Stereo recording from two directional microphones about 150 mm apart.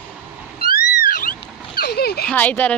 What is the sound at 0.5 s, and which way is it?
Cat, 70° left (ahead or behind).